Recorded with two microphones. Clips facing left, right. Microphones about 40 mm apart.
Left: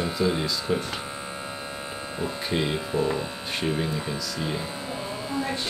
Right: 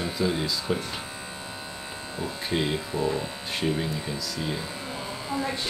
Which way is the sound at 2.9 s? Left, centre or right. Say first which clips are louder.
Left 2 dB; centre.